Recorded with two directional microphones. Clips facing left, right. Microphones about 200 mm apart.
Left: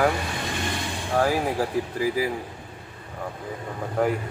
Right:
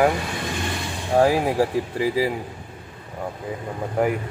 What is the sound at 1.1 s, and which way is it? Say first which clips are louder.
Speech: right 5 dB; 25° right (ahead or behind).